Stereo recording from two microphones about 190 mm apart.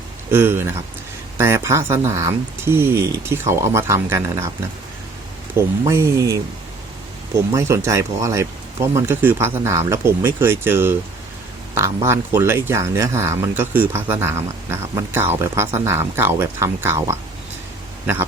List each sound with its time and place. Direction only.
0.3 s speech: 10° right (ahead or behind)
5.5 s speech: 15° right (ahead or behind)
12.0 s speech: 15° right (ahead or behind)